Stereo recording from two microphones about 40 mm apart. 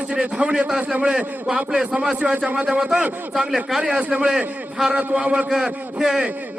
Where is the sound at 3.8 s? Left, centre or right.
Right.